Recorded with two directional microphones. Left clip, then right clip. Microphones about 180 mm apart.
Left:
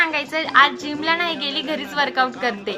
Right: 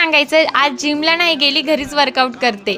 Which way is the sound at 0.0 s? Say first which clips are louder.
Right 8 dB; 55° right (ahead or behind).